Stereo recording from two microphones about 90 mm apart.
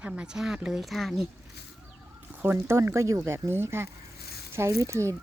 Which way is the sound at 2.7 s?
30° right (ahead or behind).